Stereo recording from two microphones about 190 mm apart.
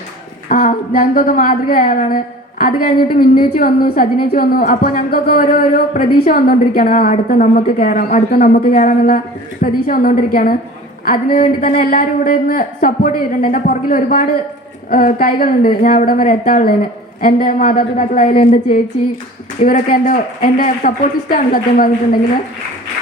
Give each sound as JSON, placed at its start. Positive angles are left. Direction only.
{"t": 0.4, "sound": "a woman's voice", "side_deg": 45}
{"t": 19.6, "sound": "a woman's voice", "side_deg": 45}